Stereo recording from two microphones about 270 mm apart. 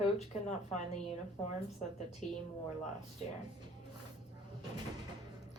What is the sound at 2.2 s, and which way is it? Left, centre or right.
Speech, left.